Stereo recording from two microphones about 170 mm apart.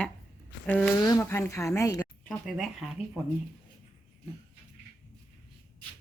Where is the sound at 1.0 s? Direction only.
20° left (ahead or behind).